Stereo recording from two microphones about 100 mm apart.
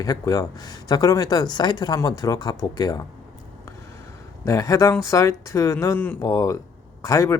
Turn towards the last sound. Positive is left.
turn(degrees=30)  # may be behind; listen again after turning